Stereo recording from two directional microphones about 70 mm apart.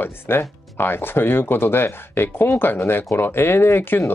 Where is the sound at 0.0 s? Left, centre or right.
Left.